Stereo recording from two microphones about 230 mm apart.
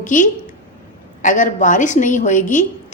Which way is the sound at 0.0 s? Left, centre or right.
Left.